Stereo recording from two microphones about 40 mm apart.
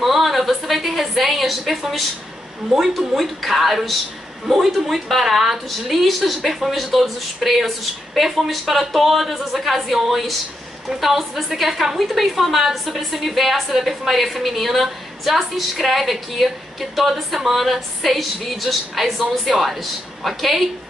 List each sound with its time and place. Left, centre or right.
0.0 s a woman's voice: centre